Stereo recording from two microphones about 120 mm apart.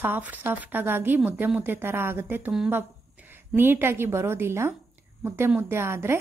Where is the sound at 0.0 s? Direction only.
15° right (ahead or behind).